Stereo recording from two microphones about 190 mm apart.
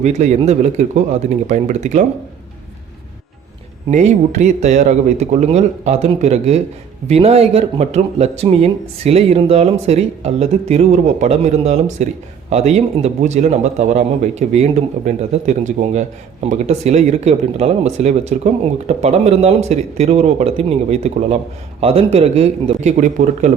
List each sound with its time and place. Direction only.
0.0 s a man's voice: 35° right (ahead or behind)
3.9 s a man's voice: 40° right (ahead or behind)